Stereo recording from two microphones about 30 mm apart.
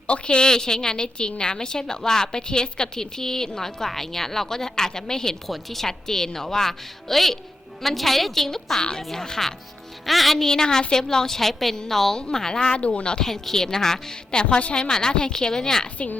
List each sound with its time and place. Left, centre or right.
0.1 s a woman's voice: left
5.5 s a woman's voice: centre
10.1 s a woman's voice: centre
10.3 s a woman's voice: centre
12.7 s a woman's voice: left
13.1 s a woman's voice: centre
14.5 s a woman's voice: left